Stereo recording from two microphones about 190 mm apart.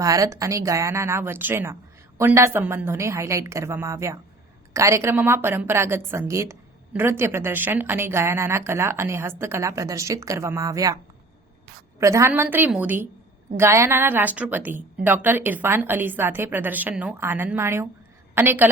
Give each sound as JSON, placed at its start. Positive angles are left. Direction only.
{"t": 0.0, "sound": "a woman's voice", "side_deg": -15}
{"t": 11.9, "sound": "a woman's voice", "side_deg": -15}